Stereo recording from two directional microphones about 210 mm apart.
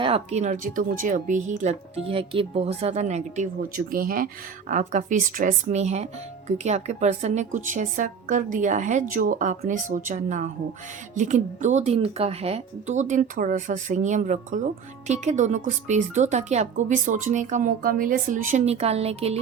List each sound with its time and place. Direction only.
0.0 s a woman's voice: 30° right (ahead or behind)